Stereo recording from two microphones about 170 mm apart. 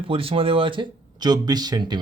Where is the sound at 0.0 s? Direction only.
35° right (ahead or behind).